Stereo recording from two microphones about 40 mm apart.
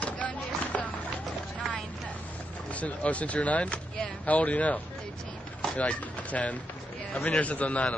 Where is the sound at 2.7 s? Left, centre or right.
Left.